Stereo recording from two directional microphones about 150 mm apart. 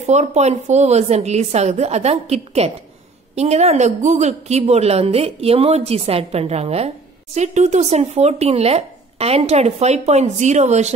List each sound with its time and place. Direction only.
0.0 s speech: 50° right (ahead or behind)